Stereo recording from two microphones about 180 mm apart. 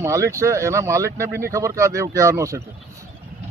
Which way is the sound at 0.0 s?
15° right (ahead or behind).